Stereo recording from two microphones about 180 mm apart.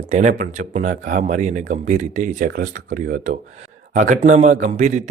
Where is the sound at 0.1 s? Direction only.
40° right (ahead or behind).